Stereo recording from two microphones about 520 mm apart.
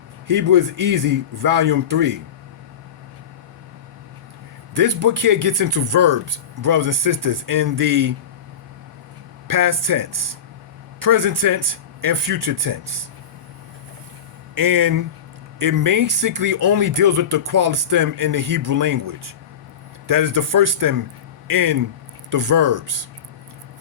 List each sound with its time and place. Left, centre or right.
0.3 s speech: right
4.7 s speech: right
9.5 s speech: right
14.5 s speech: right